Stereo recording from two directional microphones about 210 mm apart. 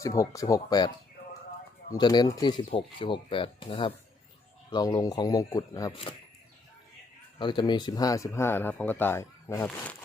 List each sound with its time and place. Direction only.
0.3 s speech: 15° left (ahead or behind)
7.3 s speech: 20° left (ahead or behind)